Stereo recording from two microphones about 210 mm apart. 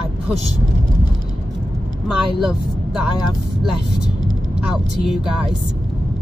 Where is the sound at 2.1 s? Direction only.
Centre (ahead or behind).